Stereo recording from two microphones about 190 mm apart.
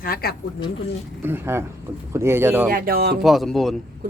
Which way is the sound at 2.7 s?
50° right (ahead or behind).